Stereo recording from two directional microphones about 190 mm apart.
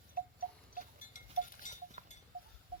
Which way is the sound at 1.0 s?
45° left (ahead or behind).